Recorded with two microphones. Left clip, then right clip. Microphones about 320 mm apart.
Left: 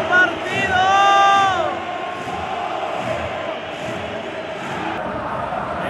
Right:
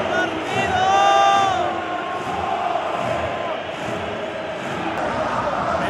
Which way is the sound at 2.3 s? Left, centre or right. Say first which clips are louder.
Right 4 dB; centre.